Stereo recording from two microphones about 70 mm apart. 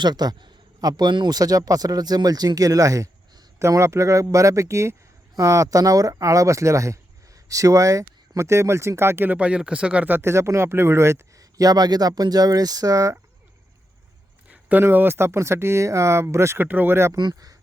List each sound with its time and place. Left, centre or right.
0.0 s speech: right
3.6 s speech: right
9.4 s speech: centre
10.1 s speech: right
14.5 s speech: right
16.6 s speech: right
17.2 s speech: right